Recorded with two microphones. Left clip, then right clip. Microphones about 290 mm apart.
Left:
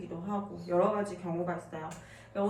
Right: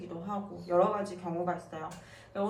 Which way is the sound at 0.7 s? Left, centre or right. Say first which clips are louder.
Right 1 dB; centre.